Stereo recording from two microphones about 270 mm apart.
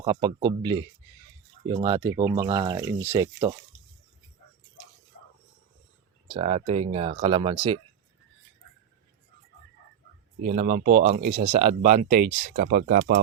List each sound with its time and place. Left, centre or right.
0.0 s speech: centre
6.2 s speech: centre
10.4 s speech: right